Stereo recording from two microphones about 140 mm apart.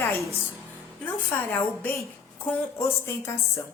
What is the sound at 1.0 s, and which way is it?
A woman's voice, 15° left (ahead or behind).